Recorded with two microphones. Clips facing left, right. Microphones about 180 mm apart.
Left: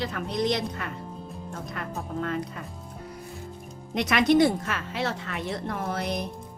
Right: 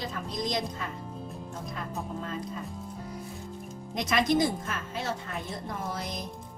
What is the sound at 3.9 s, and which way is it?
Speech, 65° left (ahead or behind).